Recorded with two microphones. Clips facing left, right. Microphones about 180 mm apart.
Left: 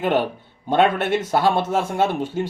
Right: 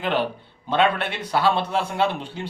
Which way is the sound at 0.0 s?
45° left (ahead or behind).